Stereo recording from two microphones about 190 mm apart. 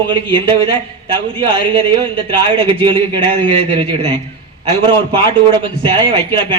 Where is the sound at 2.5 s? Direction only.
25° right (ahead or behind).